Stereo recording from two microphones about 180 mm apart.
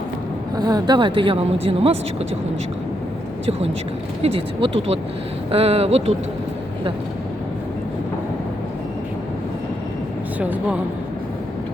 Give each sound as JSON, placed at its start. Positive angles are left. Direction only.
{"t": 0.5, "sound": "speech", "side_deg": -20}
{"t": 4.2, "sound": "speech", "side_deg": -30}
{"t": 10.4, "sound": "speech", "side_deg": -5}